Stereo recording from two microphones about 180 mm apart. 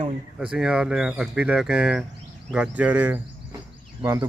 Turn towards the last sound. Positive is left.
turn(degrees=-15)  # may be behind; listen again after turning